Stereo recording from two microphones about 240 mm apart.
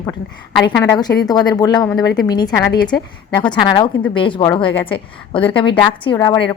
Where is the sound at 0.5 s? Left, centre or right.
Centre.